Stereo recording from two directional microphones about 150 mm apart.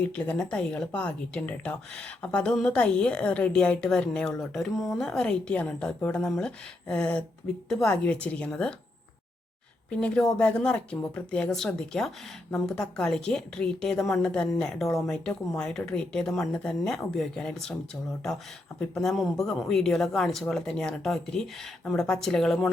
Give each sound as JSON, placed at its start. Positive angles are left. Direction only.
{"t": 0.0, "sound": "speech", "side_deg": 10}
{"t": 9.9, "sound": "speech", "side_deg": 5}
{"t": 18.9, "sound": "speech", "side_deg": 0}